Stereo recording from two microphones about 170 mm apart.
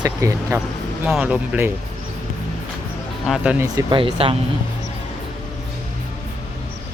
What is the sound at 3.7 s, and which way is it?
Speech, 30° right (ahead or behind).